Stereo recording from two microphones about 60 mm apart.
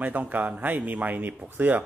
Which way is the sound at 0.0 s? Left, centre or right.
Right.